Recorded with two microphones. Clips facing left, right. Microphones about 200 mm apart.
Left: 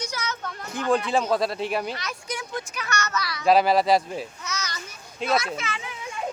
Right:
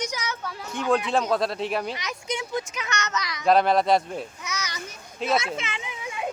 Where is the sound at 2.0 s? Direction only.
20° right (ahead or behind).